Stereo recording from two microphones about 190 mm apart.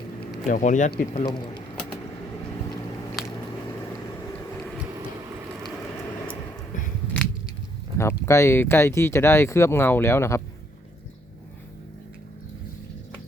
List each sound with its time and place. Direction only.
0.4 s speech: 40° left (ahead or behind)
1.2 s speech: 25° left (ahead or behind)
7.9 s speech: 15° left (ahead or behind)